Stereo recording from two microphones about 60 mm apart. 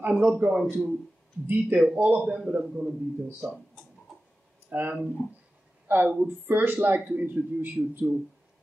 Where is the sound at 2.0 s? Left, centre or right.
Right.